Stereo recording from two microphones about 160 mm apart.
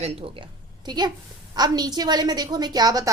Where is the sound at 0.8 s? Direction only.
25° right (ahead or behind).